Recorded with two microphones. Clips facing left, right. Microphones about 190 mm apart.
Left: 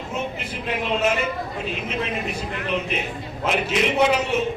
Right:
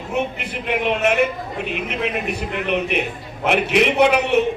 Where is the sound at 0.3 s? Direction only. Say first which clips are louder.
Right 4 dB; 65° right (ahead or behind).